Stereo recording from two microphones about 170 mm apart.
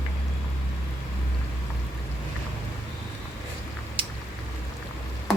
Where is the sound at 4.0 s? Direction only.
30° right (ahead or behind).